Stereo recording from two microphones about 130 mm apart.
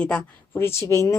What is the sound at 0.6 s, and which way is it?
Speech, 20° left (ahead or behind).